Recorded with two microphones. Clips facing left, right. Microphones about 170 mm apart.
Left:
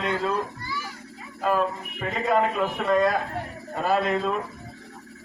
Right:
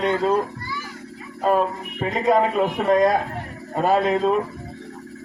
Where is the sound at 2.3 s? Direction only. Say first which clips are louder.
Right 4 dB; 35° right (ahead or behind).